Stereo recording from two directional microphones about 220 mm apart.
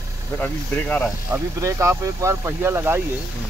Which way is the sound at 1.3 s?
15° right (ahead or behind).